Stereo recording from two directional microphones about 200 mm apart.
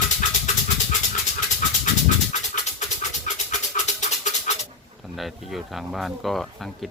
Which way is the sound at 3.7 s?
35° left (ahead or behind).